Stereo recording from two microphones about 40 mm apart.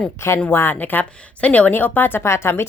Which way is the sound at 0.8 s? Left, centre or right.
Left.